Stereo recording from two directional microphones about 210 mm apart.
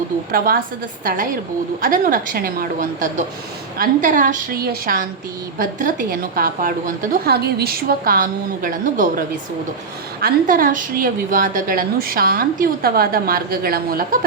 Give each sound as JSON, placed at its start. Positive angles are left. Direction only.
{"t": 0.3, "sound": "a woman's voice", "side_deg": -45}